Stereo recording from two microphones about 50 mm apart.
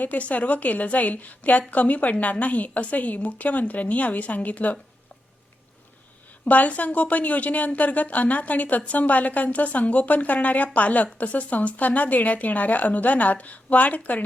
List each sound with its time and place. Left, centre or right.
0.0 s a woman's voice: left
6.4 s a woman's voice: left